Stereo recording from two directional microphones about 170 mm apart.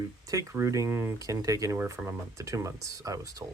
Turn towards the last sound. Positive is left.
turn(degrees=-20)  # may be behind; listen again after turning